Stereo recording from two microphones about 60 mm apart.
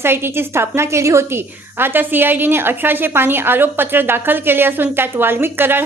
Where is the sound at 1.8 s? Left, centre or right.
Right.